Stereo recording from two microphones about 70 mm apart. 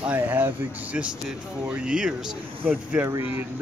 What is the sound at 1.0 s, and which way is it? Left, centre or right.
Speech, centre.